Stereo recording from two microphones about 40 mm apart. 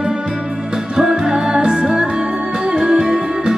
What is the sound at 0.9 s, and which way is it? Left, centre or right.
Music, centre.